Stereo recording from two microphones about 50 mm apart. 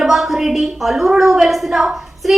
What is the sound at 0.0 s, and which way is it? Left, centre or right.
A woman's voice, centre.